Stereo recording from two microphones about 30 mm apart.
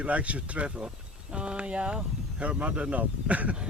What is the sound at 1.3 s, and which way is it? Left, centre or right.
Speech, right.